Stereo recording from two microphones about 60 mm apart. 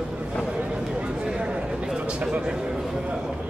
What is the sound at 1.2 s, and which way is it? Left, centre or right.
A man's voice, centre.